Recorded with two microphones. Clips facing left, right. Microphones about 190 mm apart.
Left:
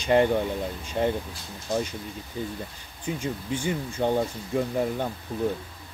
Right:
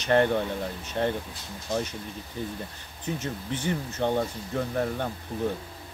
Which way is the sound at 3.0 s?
10° left (ahead or behind).